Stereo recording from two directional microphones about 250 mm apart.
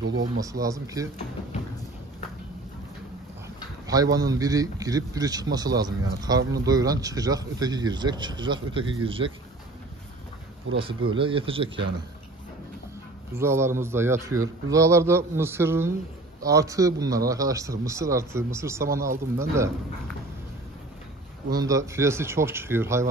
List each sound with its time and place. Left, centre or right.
0.2 s a man's voice: centre
3.8 s a man's voice: centre
11.1 s speech: centre
13.4 s a man's voice: centre
21.5 s a man's voice: centre